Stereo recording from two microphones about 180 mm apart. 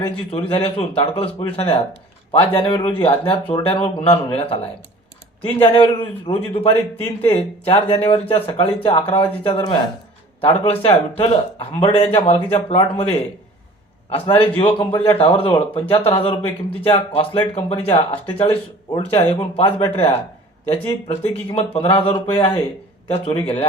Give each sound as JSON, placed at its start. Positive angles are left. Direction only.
{"t": 0.3, "sound": "a man's voice", "side_deg": 30}
{"t": 14.3, "sound": "a man's voice", "side_deg": 30}